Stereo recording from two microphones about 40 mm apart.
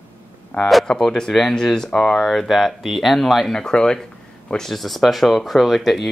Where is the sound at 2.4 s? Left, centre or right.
Centre.